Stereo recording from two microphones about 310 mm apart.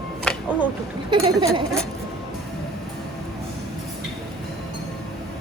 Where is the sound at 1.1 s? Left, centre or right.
Centre.